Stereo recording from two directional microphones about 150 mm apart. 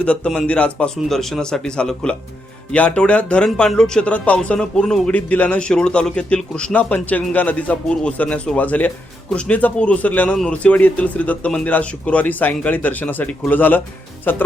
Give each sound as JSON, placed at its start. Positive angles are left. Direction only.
{"t": 0.0, "sound": "speech", "side_deg": 10}